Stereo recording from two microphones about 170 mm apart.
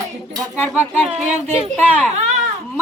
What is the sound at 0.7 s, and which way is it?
Speech, 10° right (ahead or behind).